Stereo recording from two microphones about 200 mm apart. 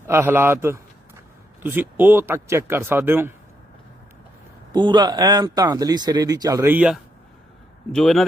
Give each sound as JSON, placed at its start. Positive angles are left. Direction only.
{"t": 0.1, "sound": "speech", "side_deg": -10}
{"t": 4.7, "sound": "speech", "side_deg": -25}